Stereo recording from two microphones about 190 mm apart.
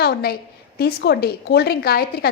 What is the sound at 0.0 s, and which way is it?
A woman's voice, 55° left (ahead or behind).